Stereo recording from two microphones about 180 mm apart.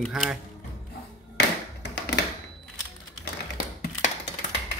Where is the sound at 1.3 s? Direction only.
65° left (ahead or behind).